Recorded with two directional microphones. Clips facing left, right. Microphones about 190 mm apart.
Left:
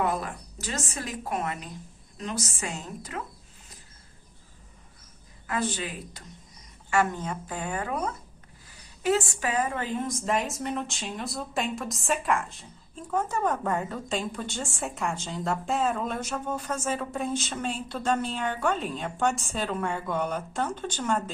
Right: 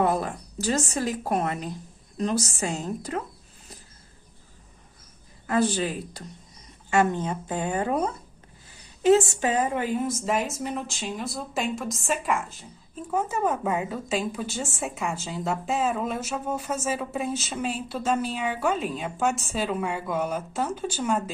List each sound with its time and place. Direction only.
0.0 s a woman's voice: 30° right (ahead or behind)
5.5 s a woman's voice: 35° right (ahead or behind)
6.9 s a woman's voice: 20° right (ahead or behind); by 21.2 s 5° right (ahead or behind)